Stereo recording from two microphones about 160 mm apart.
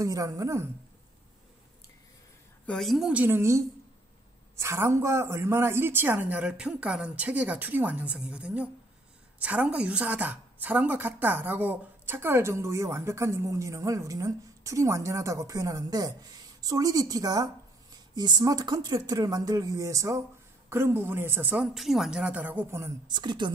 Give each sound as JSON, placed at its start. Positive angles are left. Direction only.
{"t": 0.0, "sound": "speech", "side_deg": -20}
{"t": 2.6, "sound": "a woman's voice", "side_deg": 5}